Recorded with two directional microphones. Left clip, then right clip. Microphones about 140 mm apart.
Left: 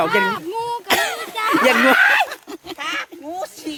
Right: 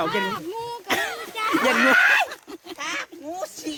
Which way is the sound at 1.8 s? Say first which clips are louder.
Even; 5° right (ahead or behind).